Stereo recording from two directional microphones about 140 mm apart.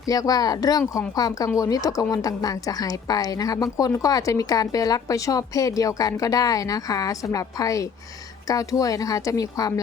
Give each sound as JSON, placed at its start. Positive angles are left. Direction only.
{"t": 0.0, "sound": "a woman's voice", "side_deg": 25}